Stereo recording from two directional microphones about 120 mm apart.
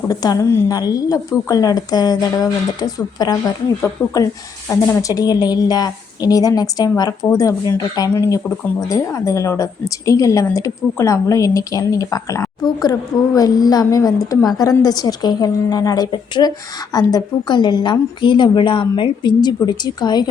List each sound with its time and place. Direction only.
0.1 s a woman's voice: 30° left (ahead or behind)
0.4 s a woman's voice: 20° left (ahead or behind)
0.8 s a woman's voice: 30° left (ahead or behind)
3.8 s a woman's voice: 20° left (ahead or behind)
16.1 s a woman's voice: 40° left (ahead or behind)